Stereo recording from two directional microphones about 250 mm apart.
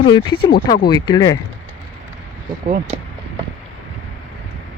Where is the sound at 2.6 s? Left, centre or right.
Right.